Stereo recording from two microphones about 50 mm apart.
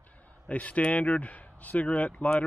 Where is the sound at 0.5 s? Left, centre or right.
Left.